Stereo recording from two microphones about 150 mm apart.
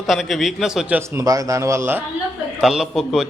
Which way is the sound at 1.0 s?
20° right (ahead or behind).